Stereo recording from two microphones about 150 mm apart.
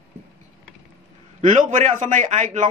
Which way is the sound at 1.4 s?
55° right (ahead or behind).